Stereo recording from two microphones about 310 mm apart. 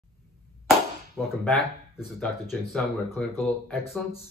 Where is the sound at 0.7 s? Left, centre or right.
Centre.